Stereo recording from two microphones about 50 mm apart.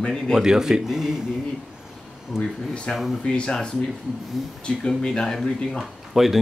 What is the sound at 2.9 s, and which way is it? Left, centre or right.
A man's voice, left.